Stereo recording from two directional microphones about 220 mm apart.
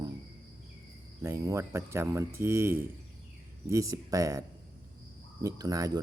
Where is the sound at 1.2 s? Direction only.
15° right (ahead or behind).